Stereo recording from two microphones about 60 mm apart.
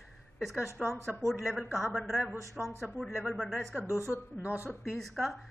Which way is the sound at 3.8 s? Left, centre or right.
Right.